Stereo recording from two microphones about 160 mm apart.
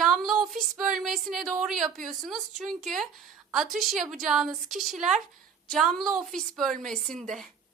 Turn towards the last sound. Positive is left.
turn(degrees=5)  # may be behind; listen again after turning